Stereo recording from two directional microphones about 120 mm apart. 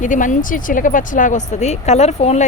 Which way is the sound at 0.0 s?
90° left.